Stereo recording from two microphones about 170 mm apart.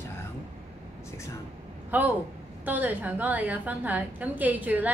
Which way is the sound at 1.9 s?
10° right (ahead or behind).